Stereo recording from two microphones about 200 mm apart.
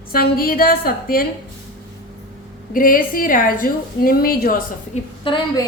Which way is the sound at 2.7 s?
45° left (ahead or behind).